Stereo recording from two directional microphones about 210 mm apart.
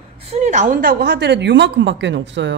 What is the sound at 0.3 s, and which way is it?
A woman's voice, 35° right (ahead or behind).